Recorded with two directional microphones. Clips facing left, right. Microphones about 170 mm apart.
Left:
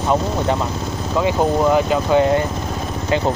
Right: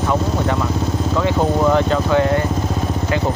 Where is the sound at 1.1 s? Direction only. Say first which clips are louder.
Left 2 dB; 15° left (ahead or behind).